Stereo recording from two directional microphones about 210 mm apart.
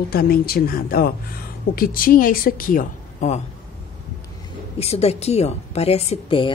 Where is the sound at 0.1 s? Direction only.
45° left (ahead or behind).